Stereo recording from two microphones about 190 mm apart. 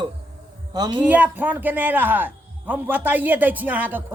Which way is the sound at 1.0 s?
10° right (ahead or behind).